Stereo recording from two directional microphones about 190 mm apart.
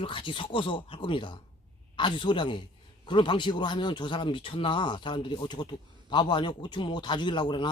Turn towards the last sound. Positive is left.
turn(degrees=25)  # may be behind; listen again after turning